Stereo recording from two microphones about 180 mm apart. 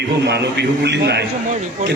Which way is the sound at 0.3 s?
65° right (ahead or behind).